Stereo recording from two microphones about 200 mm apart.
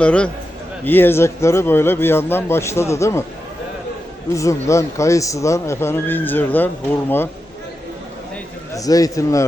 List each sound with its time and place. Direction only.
0.0 s a man's voice: 5° left (ahead or behind)
4.4 s a man's voice: 15° left (ahead or behind)
8.7 s a man's voice: 15° left (ahead or behind)